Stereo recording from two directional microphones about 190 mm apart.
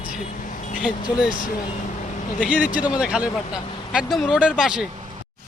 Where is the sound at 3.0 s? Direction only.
5° right (ahead or behind).